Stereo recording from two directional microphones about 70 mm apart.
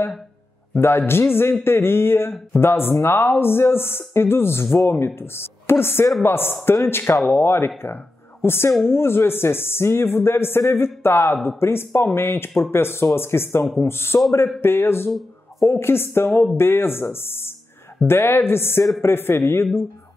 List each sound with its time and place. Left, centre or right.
0.7 s a man's voice: left